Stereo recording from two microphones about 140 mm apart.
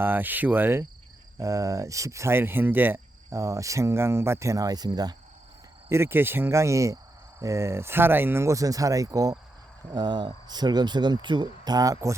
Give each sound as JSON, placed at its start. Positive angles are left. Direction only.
{"t": 0.0, "sound": "speech", "side_deg": -15}
{"t": 5.9, "sound": "speech", "side_deg": -15}